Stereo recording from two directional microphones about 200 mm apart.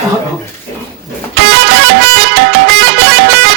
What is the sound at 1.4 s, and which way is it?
Music, 60° right (ahead or behind).